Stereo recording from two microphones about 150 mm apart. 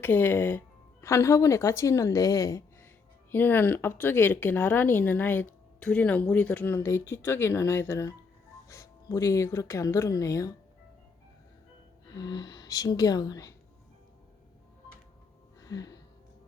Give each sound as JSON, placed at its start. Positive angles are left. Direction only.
{"t": 0.0, "sound": "speech", "side_deg": 15}
{"t": 12.0, "sound": "speech", "side_deg": 25}
{"t": 15.6, "sound": "a sound", "side_deg": 25}